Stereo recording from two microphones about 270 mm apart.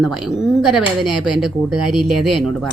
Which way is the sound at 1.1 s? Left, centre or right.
Right.